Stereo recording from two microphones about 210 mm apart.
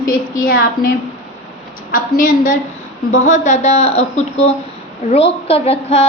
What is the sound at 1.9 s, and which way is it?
A woman's voice, 40° left (ahead or behind).